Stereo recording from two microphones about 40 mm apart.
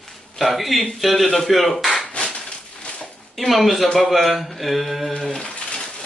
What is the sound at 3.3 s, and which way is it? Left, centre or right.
Speech, centre.